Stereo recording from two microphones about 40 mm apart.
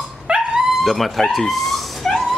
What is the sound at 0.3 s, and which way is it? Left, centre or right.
Dog, right.